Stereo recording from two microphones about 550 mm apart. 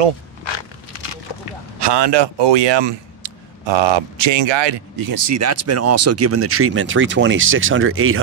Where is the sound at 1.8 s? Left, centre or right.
Right.